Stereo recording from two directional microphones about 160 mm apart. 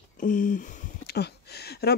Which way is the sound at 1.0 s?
90° left.